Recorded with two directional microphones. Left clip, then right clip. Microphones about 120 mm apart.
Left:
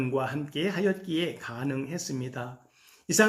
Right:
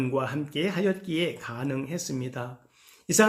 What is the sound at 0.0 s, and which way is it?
Speech, 40° right (ahead or behind).